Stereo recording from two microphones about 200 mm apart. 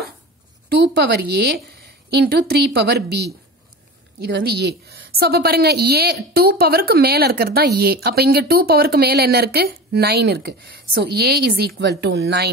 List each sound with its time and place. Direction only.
0.7 s a woman's voice: 55° right (ahead or behind)